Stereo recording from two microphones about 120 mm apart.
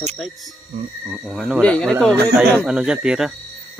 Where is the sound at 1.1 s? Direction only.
5° right (ahead or behind).